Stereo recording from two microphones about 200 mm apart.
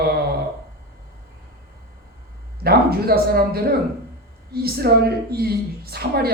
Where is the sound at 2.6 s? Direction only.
50° right (ahead or behind).